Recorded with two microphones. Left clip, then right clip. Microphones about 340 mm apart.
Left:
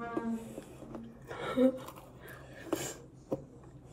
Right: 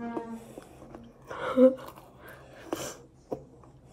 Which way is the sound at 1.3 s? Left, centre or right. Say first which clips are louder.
Right 8 dB; right.